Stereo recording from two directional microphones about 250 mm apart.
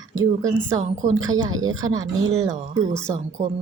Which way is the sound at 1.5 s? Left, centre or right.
Right.